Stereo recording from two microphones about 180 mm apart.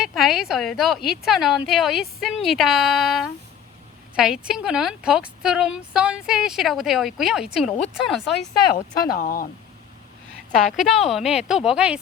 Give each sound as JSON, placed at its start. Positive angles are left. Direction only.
{"t": 0.0, "sound": "a woman's voice", "side_deg": 0}
{"t": 9.1, "sound": "speech", "side_deg": 50}
{"t": 10.7, "sound": "a woman's voice", "side_deg": 0}